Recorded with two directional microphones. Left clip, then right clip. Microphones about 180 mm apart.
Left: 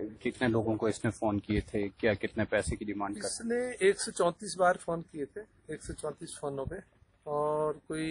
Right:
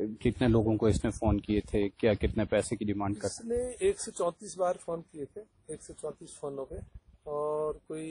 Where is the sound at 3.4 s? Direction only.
15° right (ahead or behind).